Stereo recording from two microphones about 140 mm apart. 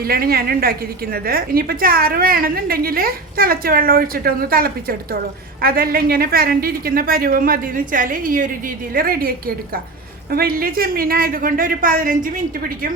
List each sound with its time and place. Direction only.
0.0 s a woman's voice: 90° right
8.9 s a woman's voice: 90° right
10.3 s a woman's voice: 90° right